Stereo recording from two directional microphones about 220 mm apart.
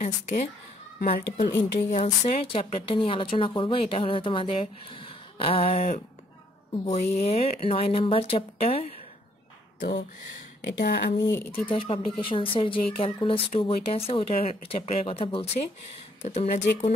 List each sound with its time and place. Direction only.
0.0 s speech: 35° left (ahead or behind)
1.9 s speech: 35° left (ahead or behind)
9.8 s speech: 50° left (ahead or behind)
11.7 s speech: 25° left (ahead or behind)